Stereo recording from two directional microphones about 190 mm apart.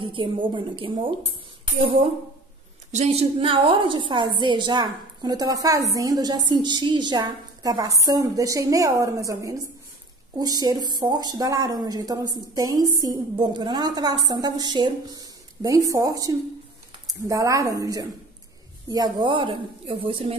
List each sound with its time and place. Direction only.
0.0 s a woman's voice: 25° right (ahead or behind)
2.9 s a woman's voice: 35° right (ahead or behind)